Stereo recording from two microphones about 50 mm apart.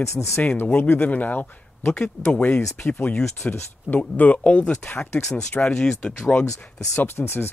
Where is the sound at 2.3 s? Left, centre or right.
Left.